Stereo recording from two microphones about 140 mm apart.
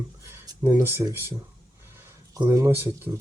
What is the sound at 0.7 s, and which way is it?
Speech, 20° right (ahead or behind).